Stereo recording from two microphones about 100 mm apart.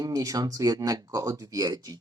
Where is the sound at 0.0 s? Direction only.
35° right (ahead or behind).